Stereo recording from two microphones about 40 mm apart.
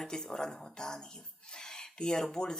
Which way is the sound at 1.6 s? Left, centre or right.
Centre.